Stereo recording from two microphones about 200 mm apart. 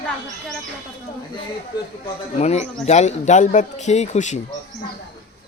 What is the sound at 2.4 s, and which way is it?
Speech, 35° left (ahead or behind).